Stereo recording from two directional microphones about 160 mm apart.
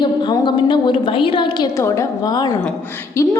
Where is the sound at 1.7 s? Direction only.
20° left (ahead or behind).